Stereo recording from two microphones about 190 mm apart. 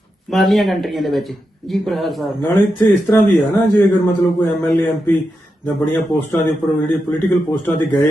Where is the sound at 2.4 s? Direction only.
10° left (ahead or behind).